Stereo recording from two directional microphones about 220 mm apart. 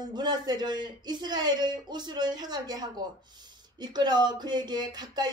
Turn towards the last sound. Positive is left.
turn(degrees=-20)  # may be behind; listen again after turning